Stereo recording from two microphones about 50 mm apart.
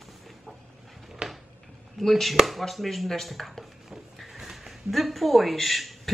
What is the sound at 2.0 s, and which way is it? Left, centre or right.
Speech, centre.